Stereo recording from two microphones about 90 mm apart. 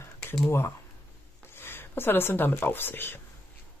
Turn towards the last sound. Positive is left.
turn(degrees=25)  # may be behind; listen again after turning